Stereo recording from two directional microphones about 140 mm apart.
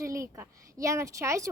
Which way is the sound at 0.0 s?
20° right (ahead or behind).